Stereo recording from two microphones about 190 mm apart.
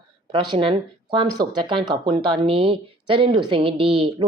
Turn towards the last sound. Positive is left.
turn(degrees=-30)  # may be behind; listen again after turning